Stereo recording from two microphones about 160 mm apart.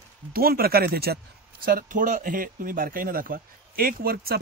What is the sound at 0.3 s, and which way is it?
Speech, 70° right (ahead or behind).